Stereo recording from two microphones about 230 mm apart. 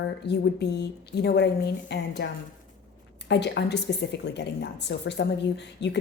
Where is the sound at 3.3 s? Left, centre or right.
Left.